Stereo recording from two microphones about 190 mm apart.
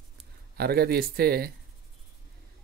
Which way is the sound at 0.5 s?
55° right (ahead or behind).